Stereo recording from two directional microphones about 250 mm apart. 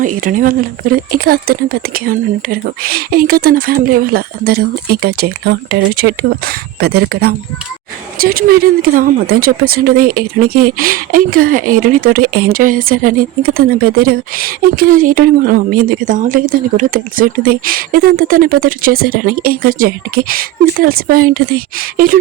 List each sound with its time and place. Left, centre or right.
0.0 s speech: right